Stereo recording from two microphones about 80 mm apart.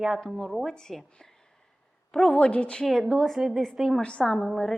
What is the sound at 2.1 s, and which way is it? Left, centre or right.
Speech, centre.